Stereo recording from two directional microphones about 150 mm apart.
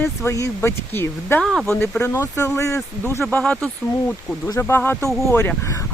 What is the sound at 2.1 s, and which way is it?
Speech, 20° left (ahead or behind).